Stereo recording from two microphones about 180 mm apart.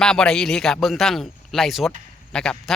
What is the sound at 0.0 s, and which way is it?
Speech, 5° left (ahead or behind).